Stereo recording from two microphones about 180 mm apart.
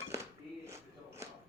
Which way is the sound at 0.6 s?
15° right (ahead or behind).